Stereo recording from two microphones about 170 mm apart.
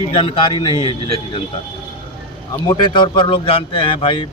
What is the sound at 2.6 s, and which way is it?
A man's voice, 30° left (ahead or behind).